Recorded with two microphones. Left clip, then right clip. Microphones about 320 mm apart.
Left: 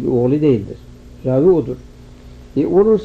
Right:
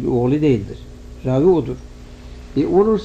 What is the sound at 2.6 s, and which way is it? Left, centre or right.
Speech, right.